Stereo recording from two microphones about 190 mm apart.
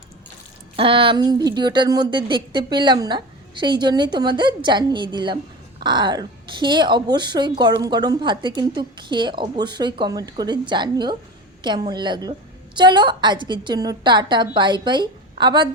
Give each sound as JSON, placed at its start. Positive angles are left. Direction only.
{"t": 0.8, "sound": "a woman's voice", "side_deg": -30}